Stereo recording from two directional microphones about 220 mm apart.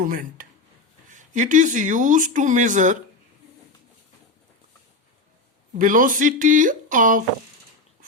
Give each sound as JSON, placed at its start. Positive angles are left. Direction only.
{"t": 0.0, "sound": "speech", "side_deg": -40}
{"t": 5.8, "sound": "speech", "side_deg": -35}